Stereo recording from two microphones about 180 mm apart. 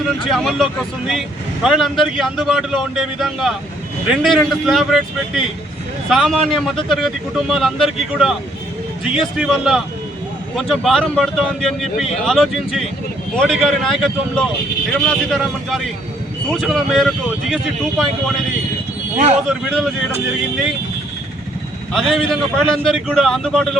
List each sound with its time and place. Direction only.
0.3 s a man's voice: centre (ahead or behind)
19.1 s speech: 40° right (ahead or behind)
19.6 s a man's voice: centre (ahead or behind)
21.9 s a man's voice: centre (ahead or behind)